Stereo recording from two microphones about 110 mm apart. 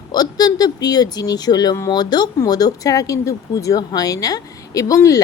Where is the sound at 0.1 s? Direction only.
35° left (ahead or behind).